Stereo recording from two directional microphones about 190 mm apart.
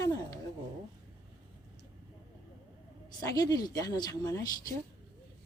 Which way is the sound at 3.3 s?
20° left (ahead or behind).